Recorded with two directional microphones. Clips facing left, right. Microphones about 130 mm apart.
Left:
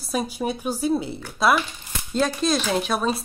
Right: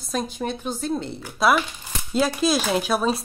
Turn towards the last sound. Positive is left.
turn(degrees=0)  # may be behind; listen again after turning